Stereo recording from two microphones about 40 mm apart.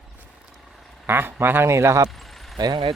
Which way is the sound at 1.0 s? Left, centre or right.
Right.